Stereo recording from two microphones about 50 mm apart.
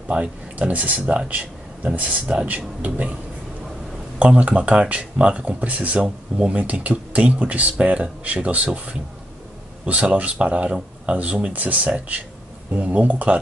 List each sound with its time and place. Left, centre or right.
0.1 s speech: right
4.2 s speech: right
6.0 s speech: centre
6.5 s speech: right
9.8 s speech: right